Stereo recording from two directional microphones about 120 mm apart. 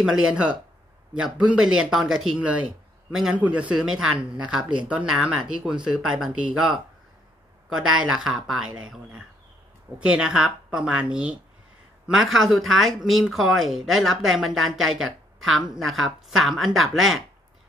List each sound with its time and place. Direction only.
0.0 s a woman's voice: 5° right (ahead or behind)
8.0 s a woman's voice: 5° right (ahead or behind)